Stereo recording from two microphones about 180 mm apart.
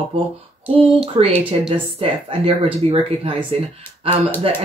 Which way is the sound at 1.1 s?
30° right (ahead or behind).